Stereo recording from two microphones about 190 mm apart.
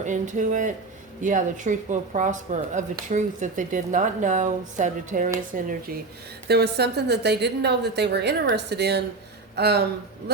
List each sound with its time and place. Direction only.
0.0 s speech: 40° right (ahead or behind)
6.5 s a woman's voice: 60° right (ahead or behind)